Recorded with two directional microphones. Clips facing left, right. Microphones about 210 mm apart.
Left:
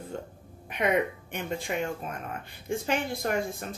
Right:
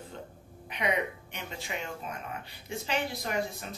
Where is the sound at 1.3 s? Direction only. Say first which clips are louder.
Left 7 dB; 50° left (ahead or behind).